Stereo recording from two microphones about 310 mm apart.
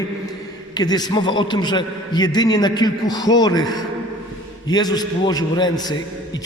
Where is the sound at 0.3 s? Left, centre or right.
Centre.